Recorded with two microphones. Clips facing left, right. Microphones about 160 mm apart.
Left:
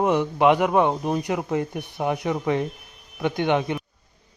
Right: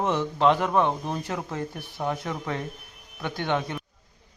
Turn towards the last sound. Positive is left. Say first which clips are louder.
# left 6 dB
turn(degrees=15)  # may be behind; listen again after turning